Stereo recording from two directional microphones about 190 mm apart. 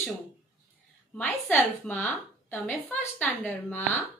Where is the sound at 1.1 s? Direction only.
10° left (ahead or behind).